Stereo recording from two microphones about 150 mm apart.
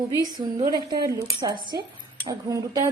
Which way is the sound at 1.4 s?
30° right (ahead or behind).